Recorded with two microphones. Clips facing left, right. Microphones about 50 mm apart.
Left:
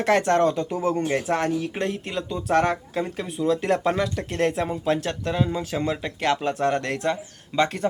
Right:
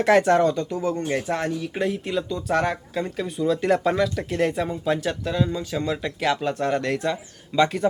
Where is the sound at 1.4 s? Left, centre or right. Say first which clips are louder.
Left 2 dB; centre.